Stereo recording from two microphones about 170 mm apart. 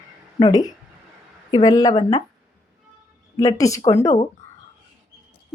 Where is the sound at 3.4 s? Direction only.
20° left (ahead or behind).